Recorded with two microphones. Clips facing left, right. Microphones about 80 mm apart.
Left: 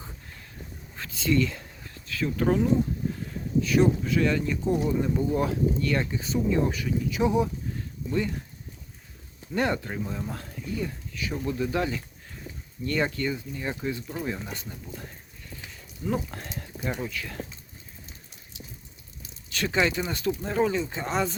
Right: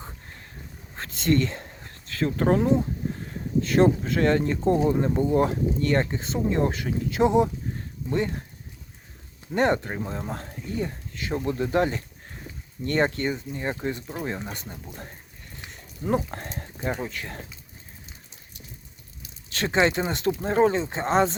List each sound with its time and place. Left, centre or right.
0.0 s a sound: right
4.0 s speech: right
7.2 s speech: right
7.8 s a sound: right
9.6 s speech: right
14.1 s speech: right
16.0 s speech: right
19.5 s speech: right